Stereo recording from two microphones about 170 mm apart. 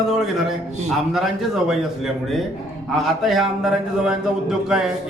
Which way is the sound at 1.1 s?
Centre (ahead or behind).